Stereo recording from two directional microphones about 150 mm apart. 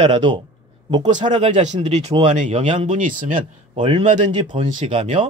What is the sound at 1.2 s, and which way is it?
Speech, 50° right (ahead or behind).